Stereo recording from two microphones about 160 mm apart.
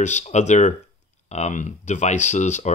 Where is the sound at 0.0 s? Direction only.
45° left (ahead or behind).